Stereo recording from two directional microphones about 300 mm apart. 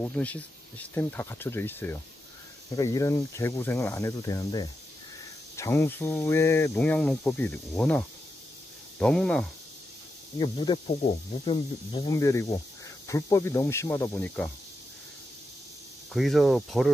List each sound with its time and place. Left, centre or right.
0.0 s speech: centre
9.0 s speech: centre
10.4 s speech: centre
16.1 s speech: centre